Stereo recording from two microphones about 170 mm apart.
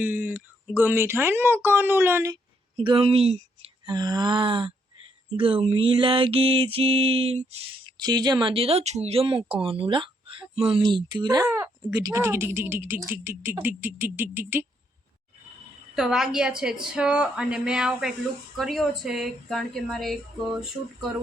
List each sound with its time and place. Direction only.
0.0 s speech: 10° right (ahead or behind)
2.7 s mantra: 30° right (ahead or behind)
3.8 s groan: 25° right (ahead or behind)
5.3 s mantra: 30° right (ahead or behind)
10.8 s groan: 25° right (ahead or behind)
11.4 s speech: 15° right (ahead or behind)
16.0 s a woman's voice: 5° right (ahead or behind)